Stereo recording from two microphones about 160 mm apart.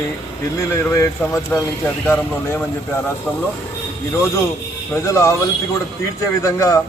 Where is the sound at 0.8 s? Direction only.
15° left (ahead or behind).